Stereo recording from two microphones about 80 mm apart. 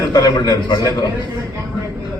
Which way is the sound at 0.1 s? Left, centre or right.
Left.